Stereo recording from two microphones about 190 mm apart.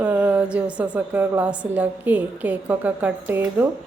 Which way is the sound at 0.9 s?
10° right (ahead or behind).